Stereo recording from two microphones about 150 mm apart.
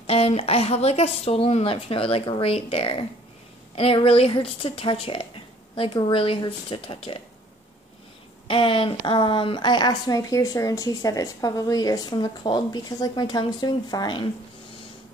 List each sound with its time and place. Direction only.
0.0 s speech: 40° left (ahead or behind)
8.5 s a woman's voice: 35° left (ahead or behind)